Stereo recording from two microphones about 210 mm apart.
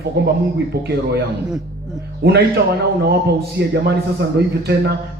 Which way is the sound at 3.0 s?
50° right (ahead or behind).